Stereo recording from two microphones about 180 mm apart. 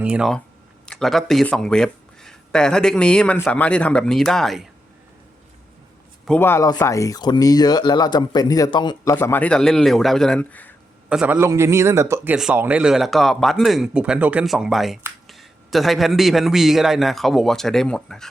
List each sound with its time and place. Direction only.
0.0 s speech: 5° right (ahead or behind)
6.2 s speech: 10° left (ahead or behind); by 9.1 s 25° left (ahead or behind)
9.1 s speech: 10° left (ahead or behind)
11.1 s speech: 5° right (ahead or behind)